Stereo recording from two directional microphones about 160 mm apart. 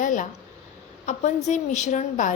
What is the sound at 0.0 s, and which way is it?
A woman's voice, 55° left (ahead or behind).